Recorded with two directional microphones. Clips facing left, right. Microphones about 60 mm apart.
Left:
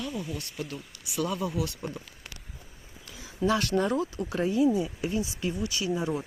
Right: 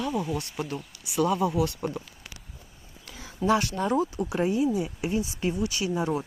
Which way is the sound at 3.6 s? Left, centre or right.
Centre.